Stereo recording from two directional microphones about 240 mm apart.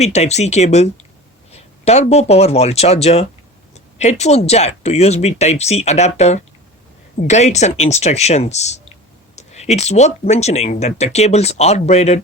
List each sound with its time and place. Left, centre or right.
0.0 s speech: left